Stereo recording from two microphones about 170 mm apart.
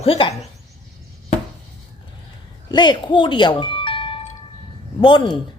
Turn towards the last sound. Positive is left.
turn(degrees=30)  # may be behind; listen again after turning